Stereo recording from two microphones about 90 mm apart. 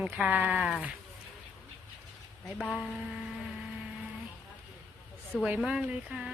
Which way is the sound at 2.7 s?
5° right (ahead or behind).